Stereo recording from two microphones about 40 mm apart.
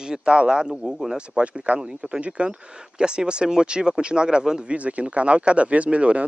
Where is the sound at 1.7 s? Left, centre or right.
Right.